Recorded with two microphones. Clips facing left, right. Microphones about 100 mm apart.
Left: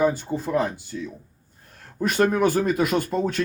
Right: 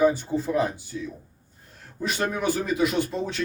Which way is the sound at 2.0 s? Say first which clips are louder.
Left 6 dB; 50° left (ahead or behind).